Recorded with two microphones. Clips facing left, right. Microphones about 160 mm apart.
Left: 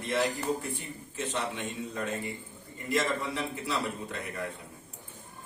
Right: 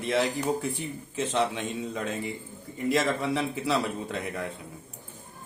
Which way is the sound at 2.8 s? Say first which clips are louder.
Right 4 dB; 90° right.